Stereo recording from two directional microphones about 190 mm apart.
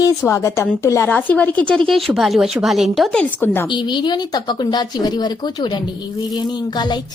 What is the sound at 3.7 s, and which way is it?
Speech, 25° left (ahead or behind).